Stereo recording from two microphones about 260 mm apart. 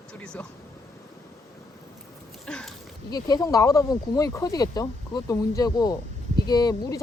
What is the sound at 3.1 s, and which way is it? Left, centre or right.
Speech, centre.